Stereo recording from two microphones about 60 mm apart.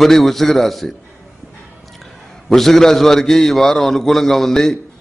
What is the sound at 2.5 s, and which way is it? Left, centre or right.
A man's voice, centre.